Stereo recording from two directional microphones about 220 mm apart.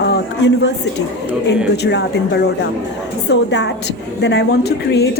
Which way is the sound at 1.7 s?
50° left (ahead or behind).